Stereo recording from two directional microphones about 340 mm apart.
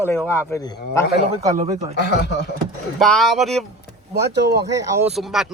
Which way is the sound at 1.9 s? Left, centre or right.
Left.